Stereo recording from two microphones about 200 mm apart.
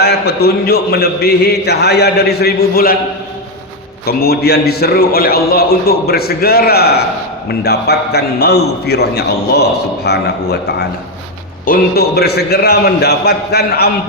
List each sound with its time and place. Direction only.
0.0 s a man's voice: 55° left (ahead or behind)
4.0 s a man's voice: 50° left (ahead or behind)